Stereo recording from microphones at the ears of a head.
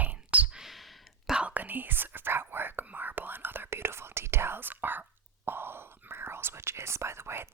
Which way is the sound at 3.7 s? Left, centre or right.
Right.